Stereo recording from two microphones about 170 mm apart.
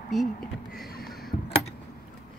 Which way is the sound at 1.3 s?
30° left (ahead or behind).